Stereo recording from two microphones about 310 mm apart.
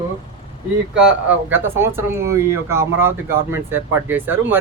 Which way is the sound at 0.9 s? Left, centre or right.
Centre.